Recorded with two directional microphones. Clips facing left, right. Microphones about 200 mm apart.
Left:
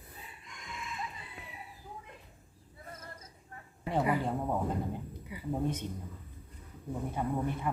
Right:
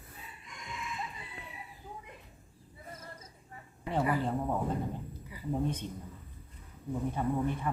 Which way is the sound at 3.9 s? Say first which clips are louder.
Even; 15° left (ahead or behind).